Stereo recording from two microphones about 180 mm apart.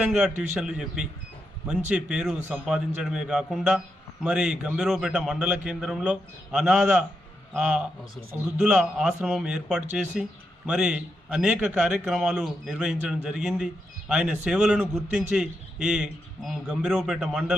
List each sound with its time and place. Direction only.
0.6 s a man's voice: 5° right (ahead or behind)